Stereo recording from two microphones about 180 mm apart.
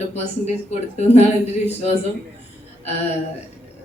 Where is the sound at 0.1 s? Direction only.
40° left (ahead or behind).